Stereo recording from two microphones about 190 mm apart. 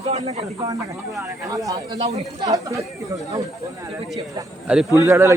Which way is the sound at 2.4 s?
20° right (ahead or behind).